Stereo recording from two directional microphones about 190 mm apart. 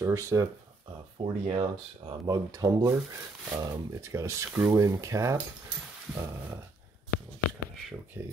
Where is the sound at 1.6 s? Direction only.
20° right (ahead or behind).